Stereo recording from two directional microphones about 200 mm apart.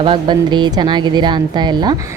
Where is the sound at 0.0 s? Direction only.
20° right (ahead or behind).